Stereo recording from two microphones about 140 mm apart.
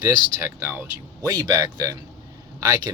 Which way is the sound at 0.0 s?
20° right (ahead or behind).